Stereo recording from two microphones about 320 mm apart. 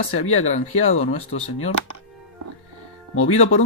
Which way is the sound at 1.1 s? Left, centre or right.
Centre.